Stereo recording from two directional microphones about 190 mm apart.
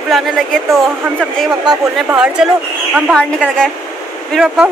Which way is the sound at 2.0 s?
5° right (ahead or behind).